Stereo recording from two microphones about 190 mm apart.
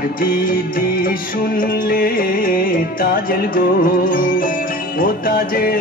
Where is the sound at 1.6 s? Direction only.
50° left (ahead or behind).